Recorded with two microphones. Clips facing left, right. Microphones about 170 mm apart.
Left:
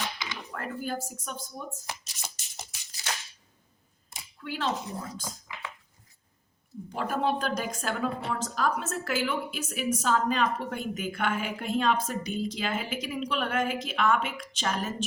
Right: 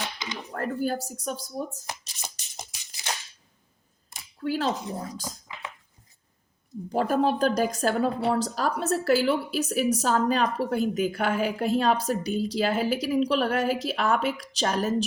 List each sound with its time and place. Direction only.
0.5 s speech: 40° right (ahead or behind)
1.9 s a sound: 15° right (ahead or behind)
4.4 s speech: 40° right (ahead or behind)
6.9 s a woman's voice: 40° right (ahead or behind)